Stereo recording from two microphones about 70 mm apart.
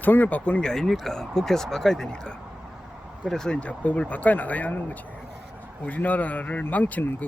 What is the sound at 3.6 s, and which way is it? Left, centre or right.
Speech, left.